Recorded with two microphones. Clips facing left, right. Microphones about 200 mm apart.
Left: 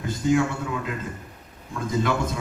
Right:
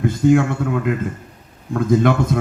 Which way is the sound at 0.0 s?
55° right (ahead or behind).